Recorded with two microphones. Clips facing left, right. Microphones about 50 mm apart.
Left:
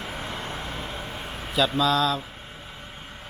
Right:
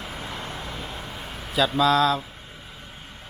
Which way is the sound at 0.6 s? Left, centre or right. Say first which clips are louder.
Left 1 dB; left.